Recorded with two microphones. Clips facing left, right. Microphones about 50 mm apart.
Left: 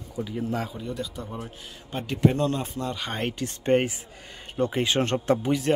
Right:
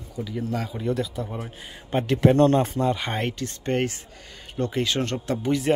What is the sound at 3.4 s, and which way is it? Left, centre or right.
Speech, centre.